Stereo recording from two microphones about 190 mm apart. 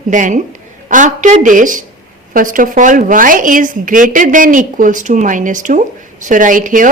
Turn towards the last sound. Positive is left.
turn(degrees=-45)  # may be behind; listen again after turning